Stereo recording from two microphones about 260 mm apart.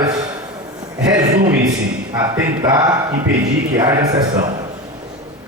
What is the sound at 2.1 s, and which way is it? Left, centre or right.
Speech, centre.